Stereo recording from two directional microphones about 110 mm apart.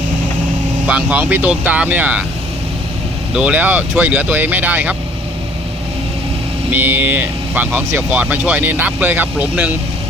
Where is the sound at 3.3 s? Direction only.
15° right (ahead or behind).